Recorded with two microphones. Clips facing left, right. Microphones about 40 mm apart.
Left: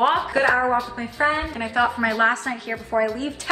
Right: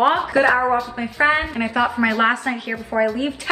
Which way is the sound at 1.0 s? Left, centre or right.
Right.